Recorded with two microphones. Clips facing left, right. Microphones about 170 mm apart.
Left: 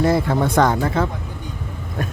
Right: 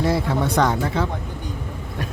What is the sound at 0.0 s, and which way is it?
Speech, 50° left (ahead or behind).